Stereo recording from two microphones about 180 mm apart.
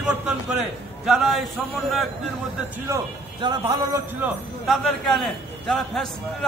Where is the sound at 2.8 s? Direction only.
20° right (ahead or behind).